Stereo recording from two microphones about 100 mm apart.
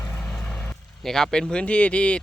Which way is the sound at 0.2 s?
10° left (ahead or behind).